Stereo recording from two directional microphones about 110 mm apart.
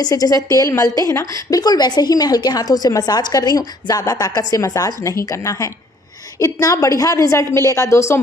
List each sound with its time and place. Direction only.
0.0 s a woman's voice: 35° left (ahead or behind)